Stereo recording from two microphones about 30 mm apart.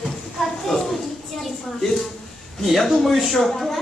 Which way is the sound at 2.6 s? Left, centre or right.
Centre.